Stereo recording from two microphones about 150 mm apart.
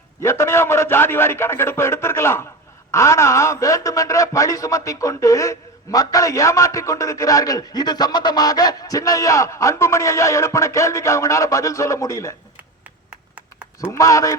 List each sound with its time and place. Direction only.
0.2 s a man's voice: 20° left (ahead or behind)
13.1 s a sound: 10° right (ahead or behind)
13.8 s a man's voice: 20° left (ahead or behind)